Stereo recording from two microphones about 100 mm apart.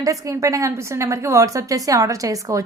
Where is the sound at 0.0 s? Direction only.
35° right (ahead or behind).